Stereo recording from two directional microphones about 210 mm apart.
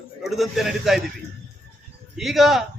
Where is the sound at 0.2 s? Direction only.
Centre (ahead or behind).